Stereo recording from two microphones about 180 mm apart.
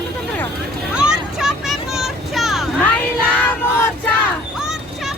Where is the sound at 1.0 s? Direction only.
5° right (ahead or behind).